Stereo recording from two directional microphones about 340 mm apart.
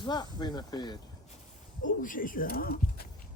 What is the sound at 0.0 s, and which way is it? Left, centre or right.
Speech, centre.